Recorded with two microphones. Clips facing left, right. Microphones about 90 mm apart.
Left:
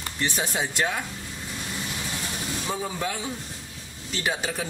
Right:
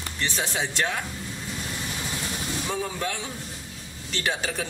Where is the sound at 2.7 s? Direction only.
20° left (ahead or behind).